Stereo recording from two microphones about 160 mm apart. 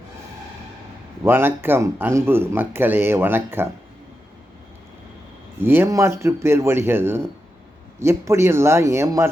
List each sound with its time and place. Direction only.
1.2 s speech: 15° right (ahead or behind)
5.6 s speech: 15° right (ahead or behind)